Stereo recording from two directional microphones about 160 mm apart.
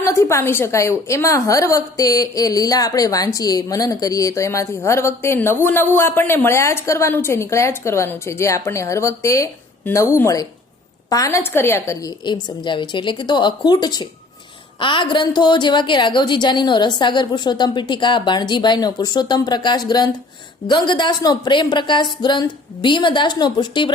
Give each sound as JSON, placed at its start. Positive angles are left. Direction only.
{"t": 0.0, "sound": "a woman's voice", "side_deg": 15}